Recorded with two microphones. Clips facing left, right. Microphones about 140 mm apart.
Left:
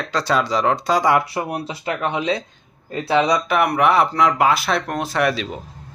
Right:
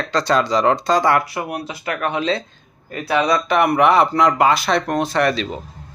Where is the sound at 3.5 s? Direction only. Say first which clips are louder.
Right 3 dB; centre (ahead or behind).